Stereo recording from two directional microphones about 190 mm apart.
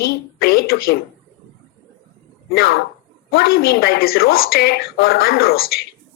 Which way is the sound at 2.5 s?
55° left (ahead or behind).